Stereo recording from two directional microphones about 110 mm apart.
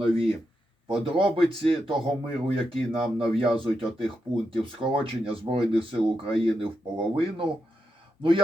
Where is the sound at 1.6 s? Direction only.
55° right (ahead or behind).